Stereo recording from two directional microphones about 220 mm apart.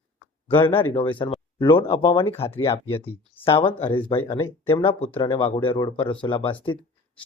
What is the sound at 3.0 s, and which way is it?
Speech, 10° left (ahead or behind).